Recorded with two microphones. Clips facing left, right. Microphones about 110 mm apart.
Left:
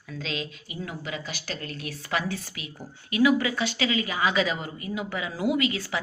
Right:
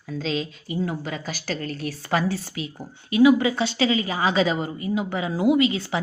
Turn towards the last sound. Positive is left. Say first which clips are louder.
# right 6 dB
turn(degrees=-25)  # may be behind; listen again after turning